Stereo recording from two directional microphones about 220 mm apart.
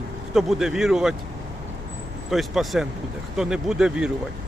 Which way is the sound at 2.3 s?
Centre (ahead or behind).